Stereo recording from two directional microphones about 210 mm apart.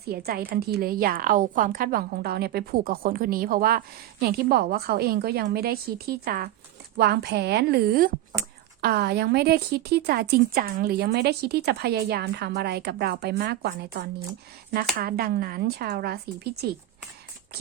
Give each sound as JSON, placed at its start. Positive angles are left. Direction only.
{"t": 0.0, "sound": "a woman's voice", "side_deg": -50}